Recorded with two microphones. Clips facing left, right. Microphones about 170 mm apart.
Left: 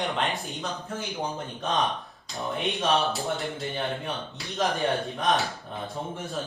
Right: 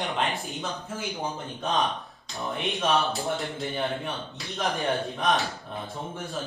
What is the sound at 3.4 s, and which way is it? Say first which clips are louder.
A man's voice: right 1 dB; centre (ahead or behind).